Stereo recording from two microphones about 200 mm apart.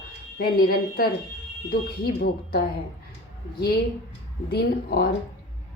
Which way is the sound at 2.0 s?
50° left (ahead or behind).